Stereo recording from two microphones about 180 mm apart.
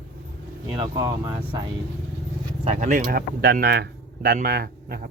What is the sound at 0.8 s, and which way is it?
Speech, 20° right (ahead or behind).